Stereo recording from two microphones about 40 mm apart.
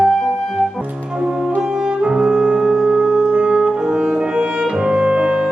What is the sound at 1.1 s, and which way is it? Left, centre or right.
Music, right.